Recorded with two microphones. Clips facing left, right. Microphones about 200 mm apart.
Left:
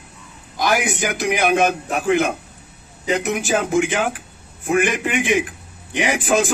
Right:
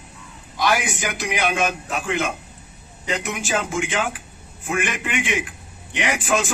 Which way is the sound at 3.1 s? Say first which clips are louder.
Left 4 dB; 60° left (ahead or behind).